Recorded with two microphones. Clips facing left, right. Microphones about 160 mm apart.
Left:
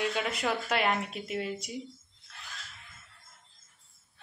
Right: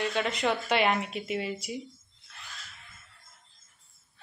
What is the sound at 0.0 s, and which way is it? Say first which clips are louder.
Speech: right 2 dB; 5° left (ahead or behind).